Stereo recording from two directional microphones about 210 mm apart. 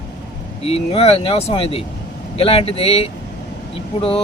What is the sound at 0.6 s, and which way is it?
Speech, 30° left (ahead or behind).